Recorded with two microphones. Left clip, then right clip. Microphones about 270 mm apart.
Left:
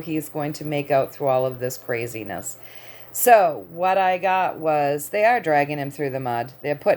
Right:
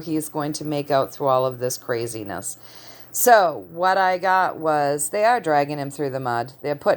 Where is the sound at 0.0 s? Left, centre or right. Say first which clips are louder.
Right 1 dB; centre.